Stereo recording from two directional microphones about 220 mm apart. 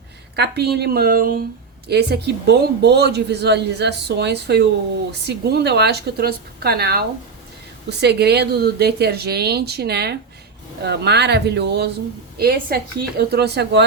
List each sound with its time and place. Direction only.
0.3 s speech: 50° right (ahead or behind)